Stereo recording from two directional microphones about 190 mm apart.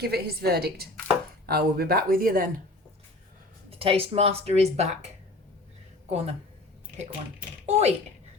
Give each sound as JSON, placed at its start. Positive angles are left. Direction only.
{"t": 0.0, "sound": "a woman's voice", "side_deg": -55}
{"t": 3.7, "sound": "a woman's voice", "side_deg": -30}
{"t": 6.1, "sound": "speech", "side_deg": -35}
{"t": 7.7, "sound": "a woman's voice", "side_deg": -35}